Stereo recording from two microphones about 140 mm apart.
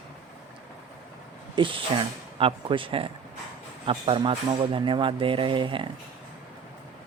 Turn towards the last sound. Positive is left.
turn(degrees=-35)  # may be behind; listen again after turning